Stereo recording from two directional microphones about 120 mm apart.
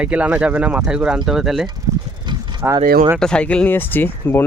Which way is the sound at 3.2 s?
10° left (ahead or behind).